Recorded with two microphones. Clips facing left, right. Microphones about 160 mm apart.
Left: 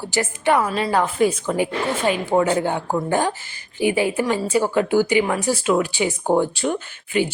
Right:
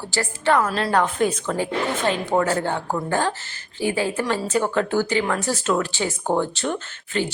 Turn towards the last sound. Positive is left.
turn(degrees=10)  # may be behind; listen again after turning